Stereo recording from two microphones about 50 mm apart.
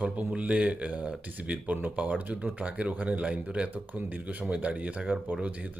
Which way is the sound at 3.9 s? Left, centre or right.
Right.